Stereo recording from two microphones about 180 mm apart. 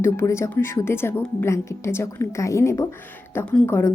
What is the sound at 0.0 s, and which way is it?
Speech, 15° left (ahead or behind).